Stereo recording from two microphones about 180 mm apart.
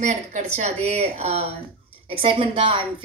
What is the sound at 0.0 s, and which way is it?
A woman's voice, 40° right (ahead or behind).